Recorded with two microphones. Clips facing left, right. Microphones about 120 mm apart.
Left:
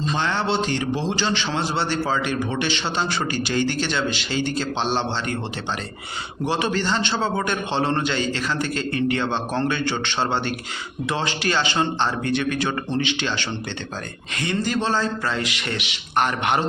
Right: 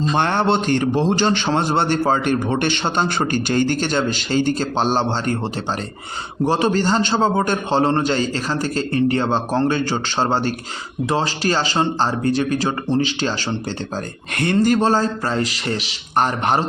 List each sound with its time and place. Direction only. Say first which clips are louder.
0.1 s a man's voice: right 5 dB; 55° right (ahead or behind)
6.4 s a man's voice: right 5 dB; 40° right (ahead or behind)
14.3 s a man's voice: right 7 dB; 50° right (ahead or behind); by 16.6 s 35° right (ahead or behind)